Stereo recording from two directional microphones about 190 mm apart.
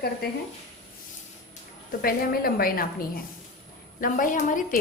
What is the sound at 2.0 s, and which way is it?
A woman's voice, 50° left (ahead or behind).